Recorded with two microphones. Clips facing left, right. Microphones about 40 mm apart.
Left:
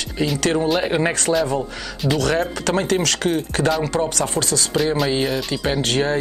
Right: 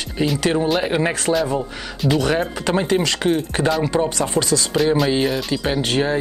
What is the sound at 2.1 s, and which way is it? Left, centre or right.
Speech, centre.